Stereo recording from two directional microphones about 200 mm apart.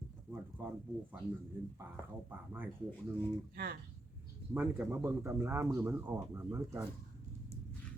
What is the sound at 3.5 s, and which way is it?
Speech, 50° right (ahead or behind).